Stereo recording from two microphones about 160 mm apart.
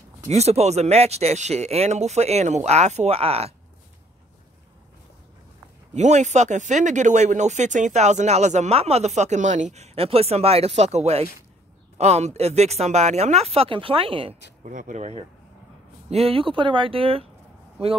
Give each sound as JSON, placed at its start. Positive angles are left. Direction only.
{"t": 0.3, "sound": "speech", "side_deg": -40}
{"t": 5.9, "sound": "speech", "side_deg": -45}
{"t": 14.6, "sound": "speech", "side_deg": -55}